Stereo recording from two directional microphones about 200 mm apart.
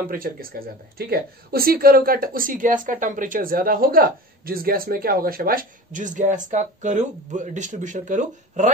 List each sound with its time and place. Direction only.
0.1 s speech: 45° right (ahead or behind)